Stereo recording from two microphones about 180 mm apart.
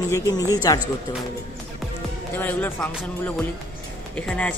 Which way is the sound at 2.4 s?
10° left (ahead or behind).